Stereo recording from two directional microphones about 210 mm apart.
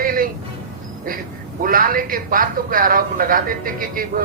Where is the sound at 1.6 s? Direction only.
40° right (ahead or behind).